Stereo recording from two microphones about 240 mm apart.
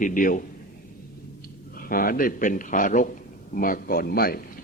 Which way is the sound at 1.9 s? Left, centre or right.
Left.